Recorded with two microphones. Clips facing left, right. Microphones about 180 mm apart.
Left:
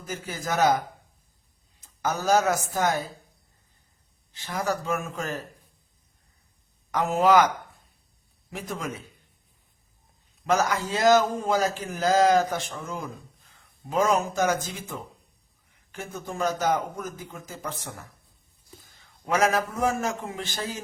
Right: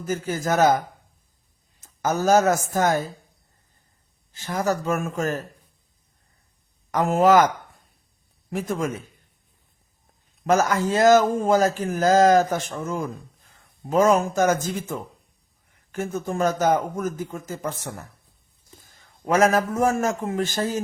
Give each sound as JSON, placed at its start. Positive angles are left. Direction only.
{"t": 0.0, "sound": "a man's voice", "side_deg": -45}
{"t": 1.8, "sound": "a man's voice", "side_deg": -45}
{"t": 4.3, "sound": "a man's voice", "side_deg": -45}
{"t": 6.9, "sound": "a man's voice", "side_deg": -45}
{"t": 10.4, "sound": "a man's voice", "side_deg": -50}